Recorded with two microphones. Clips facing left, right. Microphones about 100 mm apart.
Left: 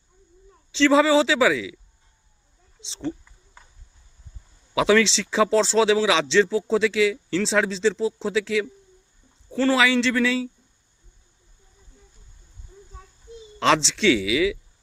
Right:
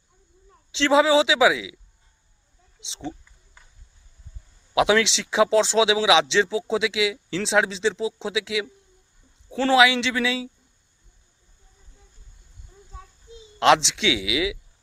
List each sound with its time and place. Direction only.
0.7 s speech: 15° right (ahead or behind)
4.9 s speech: 15° right (ahead or behind)
9.7 s speech: 10° right (ahead or behind)
13.6 s speech: 15° right (ahead or behind)